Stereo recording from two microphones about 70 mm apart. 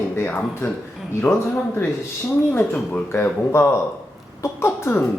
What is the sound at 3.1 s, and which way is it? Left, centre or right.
A man's voice, left.